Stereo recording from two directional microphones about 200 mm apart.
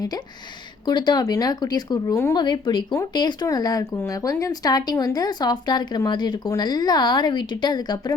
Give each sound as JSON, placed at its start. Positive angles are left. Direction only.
{"t": 0.9, "sound": "speech", "side_deg": 20}